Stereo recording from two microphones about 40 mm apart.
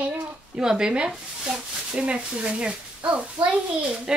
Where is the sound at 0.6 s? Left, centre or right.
Centre.